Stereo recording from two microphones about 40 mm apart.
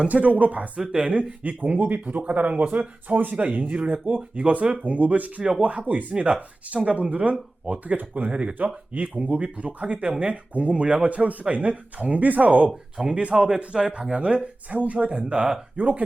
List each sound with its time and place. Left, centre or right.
0.1 s speech: right
6.2 s speech: right
8.5 s speech: right
12.2 s speech: right
13.0 s a man's voice: centre
14.1 s speech: right
15.7 s speech: right